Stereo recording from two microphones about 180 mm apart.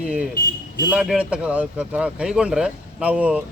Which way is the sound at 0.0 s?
5° right (ahead or behind).